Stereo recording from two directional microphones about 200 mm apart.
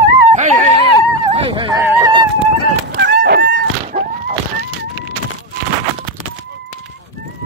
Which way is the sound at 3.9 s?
30° right (ahead or behind).